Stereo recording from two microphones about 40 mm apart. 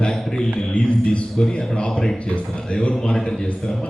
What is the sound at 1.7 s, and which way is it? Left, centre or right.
Speech, left.